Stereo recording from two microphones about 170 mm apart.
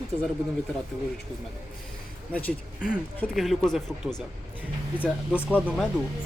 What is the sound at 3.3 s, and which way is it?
Speech, centre (ahead or behind).